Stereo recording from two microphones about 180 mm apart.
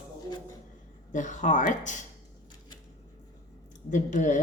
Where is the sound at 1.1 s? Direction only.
45° left (ahead or behind).